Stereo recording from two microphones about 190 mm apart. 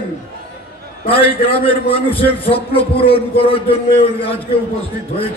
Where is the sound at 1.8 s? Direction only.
30° left (ahead or behind).